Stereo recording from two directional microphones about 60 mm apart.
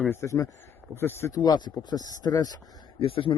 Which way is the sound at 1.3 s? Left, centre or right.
Left.